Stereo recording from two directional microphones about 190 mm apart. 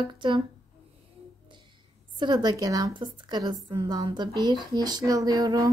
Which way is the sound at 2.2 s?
20° right (ahead or behind).